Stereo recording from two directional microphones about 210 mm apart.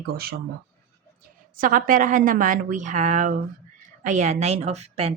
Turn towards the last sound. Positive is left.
turn(degrees=-30)  # may be behind; listen again after turning